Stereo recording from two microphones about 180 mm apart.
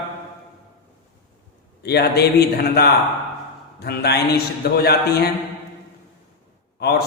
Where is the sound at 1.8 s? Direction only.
65° left (ahead or behind).